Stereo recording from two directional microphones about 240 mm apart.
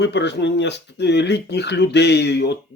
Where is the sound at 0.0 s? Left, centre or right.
Left.